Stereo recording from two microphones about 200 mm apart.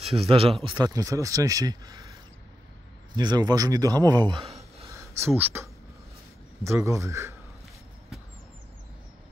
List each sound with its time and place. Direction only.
0.0 s speech: 30° right (ahead or behind)
3.2 s speech: 20° right (ahead or behind)